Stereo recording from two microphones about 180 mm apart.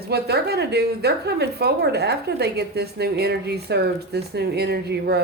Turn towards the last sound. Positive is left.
turn(degrees=-65)  # may be behind; listen again after turning